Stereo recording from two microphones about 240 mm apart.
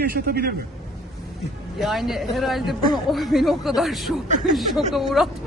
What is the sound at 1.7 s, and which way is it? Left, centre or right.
Speech, centre.